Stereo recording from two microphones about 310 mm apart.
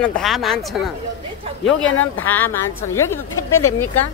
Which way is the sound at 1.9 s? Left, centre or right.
Left.